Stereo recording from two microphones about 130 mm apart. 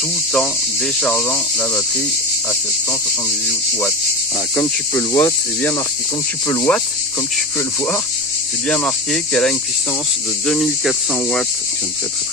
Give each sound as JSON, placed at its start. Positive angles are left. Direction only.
{"t": 1.0, "sound": "speech", "side_deg": 10}
{"t": 4.6, "sound": "speech", "side_deg": 20}
{"t": 8.6, "sound": "speech", "side_deg": 5}